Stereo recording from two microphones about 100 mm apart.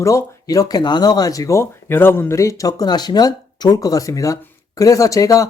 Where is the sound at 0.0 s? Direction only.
30° left (ahead or behind).